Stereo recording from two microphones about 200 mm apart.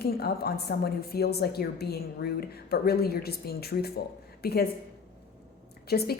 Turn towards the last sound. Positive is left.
turn(degrees=50)  # may be behind; listen again after turning